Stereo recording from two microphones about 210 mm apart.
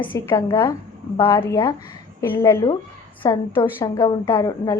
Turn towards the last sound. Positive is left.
turn(degrees=15)  # may be behind; listen again after turning